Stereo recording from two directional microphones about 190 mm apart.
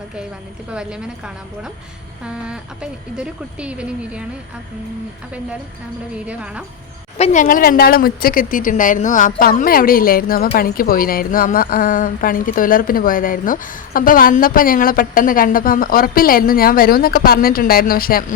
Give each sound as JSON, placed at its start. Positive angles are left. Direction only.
{"t": 0.7, "sound": "speech", "side_deg": -5}
{"t": 6.2, "sound": "speech", "side_deg": -5}
{"t": 7.2, "sound": "a woman's voice", "side_deg": 45}